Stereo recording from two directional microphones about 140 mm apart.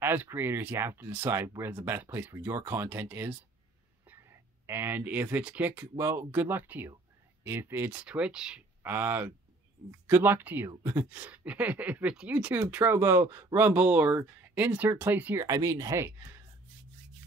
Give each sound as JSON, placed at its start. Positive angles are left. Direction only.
{"t": 0.0, "sound": "speech", "side_deg": -15}
{"t": 15.4, "sound": "speech", "side_deg": -25}